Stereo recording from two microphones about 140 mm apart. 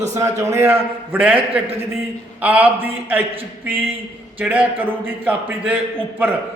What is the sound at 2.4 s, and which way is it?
Speech, 10° right (ahead or behind).